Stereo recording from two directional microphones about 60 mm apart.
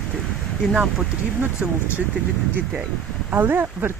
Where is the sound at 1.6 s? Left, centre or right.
Centre.